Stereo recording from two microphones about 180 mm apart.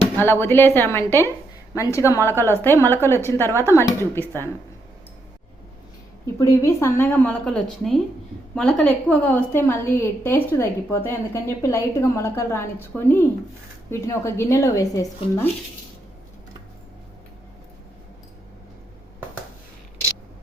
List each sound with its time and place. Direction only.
0.2 s a woman's voice: 15° left (ahead or behind)
6.4 s a woman's voice: 15° left (ahead or behind)